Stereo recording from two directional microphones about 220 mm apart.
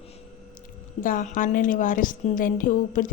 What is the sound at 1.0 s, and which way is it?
A woman's voice, 40° left (ahead or behind).